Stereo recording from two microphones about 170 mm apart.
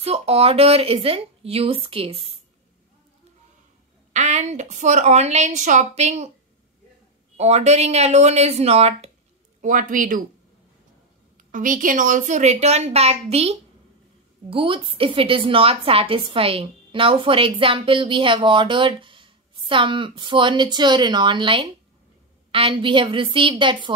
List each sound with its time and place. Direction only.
0.0 s speech: 35° right (ahead or behind)
4.1 s a woman's voice: 45° right (ahead or behind)
7.3 s speech: 40° right (ahead or behind)
9.6 s a woman's voice: 50° right (ahead or behind)
11.3 s a woman's voice: 50° right (ahead or behind); by 23.9 s 30° right (ahead or behind)